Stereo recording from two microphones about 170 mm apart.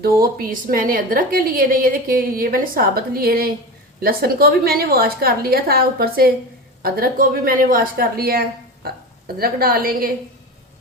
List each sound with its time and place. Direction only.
0.2 s a woman's voice: 60° right (ahead or behind)